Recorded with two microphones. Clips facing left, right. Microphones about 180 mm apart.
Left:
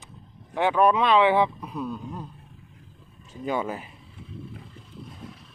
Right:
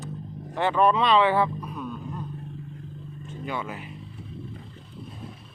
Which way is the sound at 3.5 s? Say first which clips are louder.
Left 5 dB; 40° left (ahead or behind).